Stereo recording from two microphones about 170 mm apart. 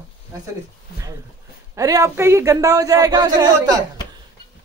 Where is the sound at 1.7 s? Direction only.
20° right (ahead or behind).